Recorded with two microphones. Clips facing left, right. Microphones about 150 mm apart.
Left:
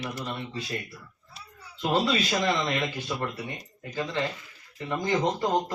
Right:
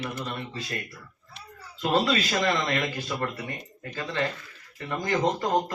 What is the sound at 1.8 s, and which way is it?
Speech, 20° left (ahead or behind).